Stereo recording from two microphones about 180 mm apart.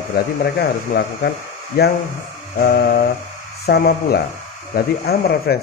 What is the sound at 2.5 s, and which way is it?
Speech, 50° left (ahead or behind).